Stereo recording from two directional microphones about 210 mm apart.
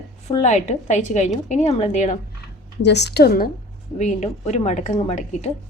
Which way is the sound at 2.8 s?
55° left (ahead or behind).